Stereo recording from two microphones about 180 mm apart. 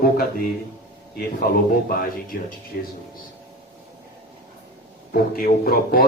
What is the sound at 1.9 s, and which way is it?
A man's voice, 55° left (ahead or behind).